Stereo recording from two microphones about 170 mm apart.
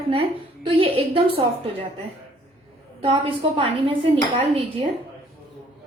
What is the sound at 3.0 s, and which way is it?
Speech, 30° right (ahead or behind).